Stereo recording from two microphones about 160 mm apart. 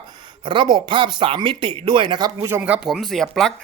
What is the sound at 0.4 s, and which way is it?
A man's voice, 30° right (ahead or behind).